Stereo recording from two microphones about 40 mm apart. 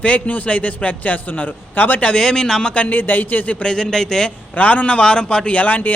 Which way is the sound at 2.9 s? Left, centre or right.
Left.